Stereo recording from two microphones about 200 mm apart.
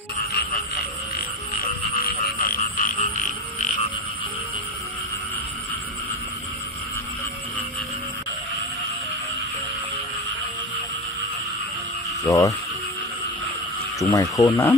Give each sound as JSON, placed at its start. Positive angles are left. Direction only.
{"t": 2.3, "sound": "frog", "side_deg": 45}
{"t": 12.3, "sound": "speech", "side_deg": 15}
{"t": 13.9, "sound": "speech", "side_deg": 20}
{"t": 14.5, "sound": "speech", "side_deg": 10}